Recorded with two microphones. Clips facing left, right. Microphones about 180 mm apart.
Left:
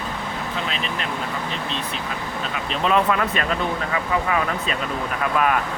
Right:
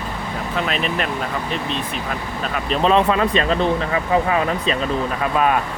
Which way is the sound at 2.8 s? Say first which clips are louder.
Right 3 dB; 30° right (ahead or behind).